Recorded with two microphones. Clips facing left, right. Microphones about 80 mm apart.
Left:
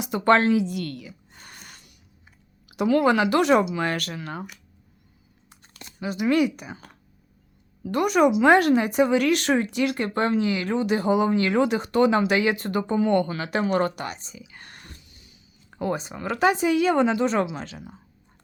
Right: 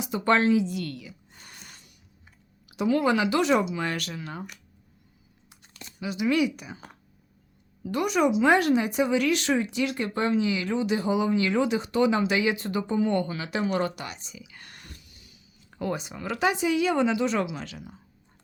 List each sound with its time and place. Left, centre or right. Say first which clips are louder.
0.0 s a sound: left 3 dB; left
2.6 s speech: left 4 dB; left
5.6 s speech: left 3 dB; left
7.9 s speech: left 4 dB; left